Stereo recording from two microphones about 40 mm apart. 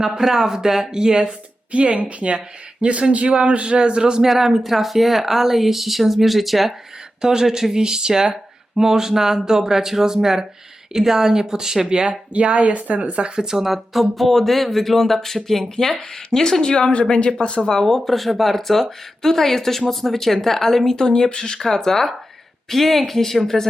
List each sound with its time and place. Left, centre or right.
0.0 s speech: centre
1.7 s a man's voice: right
4.2 s speech: centre
12.3 s a woman's voice: right
13.2 s speech: centre
13.9 s speech: centre; by 17.3 s left
17.8 s speech: centre
21.6 s speech: centre